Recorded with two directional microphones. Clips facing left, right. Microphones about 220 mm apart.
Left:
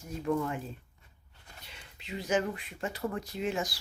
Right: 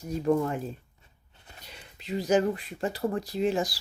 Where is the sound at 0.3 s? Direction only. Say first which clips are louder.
Right 5 dB; 40° right (ahead or behind).